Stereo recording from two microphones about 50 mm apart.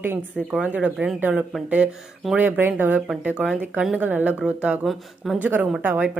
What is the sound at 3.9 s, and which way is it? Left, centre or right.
Speech, right.